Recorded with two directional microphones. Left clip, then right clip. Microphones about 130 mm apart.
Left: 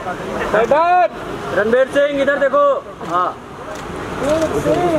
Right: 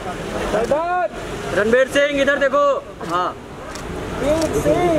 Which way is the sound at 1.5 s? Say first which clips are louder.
Left 1 dB; 45° right (ahead or behind).